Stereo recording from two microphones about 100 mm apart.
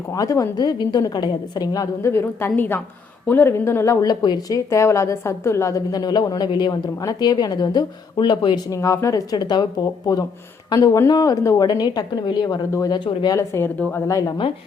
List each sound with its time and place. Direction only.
0.1 s a woman's voice: 35° left (ahead or behind)
4.0 s a woman's voice: 45° left (ahead or behind)
8.7 s a woman's voice: 30° left (ahead or behind)
10.8 s a woman's voice: 30° left (ahead or behind)
13.7 s a woman's voice: 15° left (ahead or behind)
14.1 s a woman's voice: 35° left (ahead or behind)